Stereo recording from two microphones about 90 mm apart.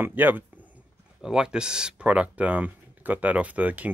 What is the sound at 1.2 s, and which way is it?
Speech, 10° right (ahead or behind).